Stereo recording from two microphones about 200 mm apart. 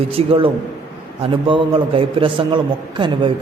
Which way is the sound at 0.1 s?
30° right (ahead or behind).